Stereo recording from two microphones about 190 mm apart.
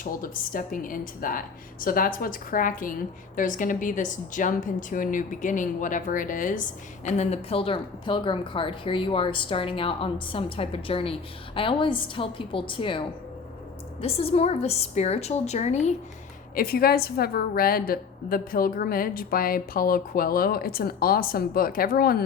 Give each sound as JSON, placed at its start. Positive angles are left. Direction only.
{"t": 0.0, "sound": "a woman's voice", "side_deg": 45}
{"t": 16.6, "sound": "a woman's voice", "side_deg": 50}